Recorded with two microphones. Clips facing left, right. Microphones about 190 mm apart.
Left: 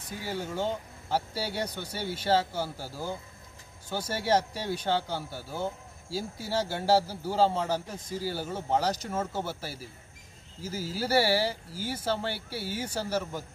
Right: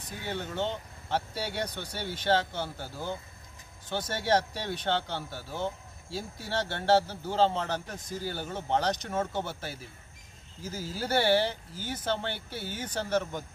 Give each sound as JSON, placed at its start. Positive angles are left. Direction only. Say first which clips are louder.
{"t": 0.2, "sound": "speech", "louder": "left 1 dB", "side_deg": 5}